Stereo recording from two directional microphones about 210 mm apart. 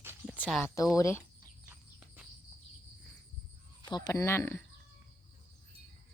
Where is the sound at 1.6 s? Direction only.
10° right (ahead or behind).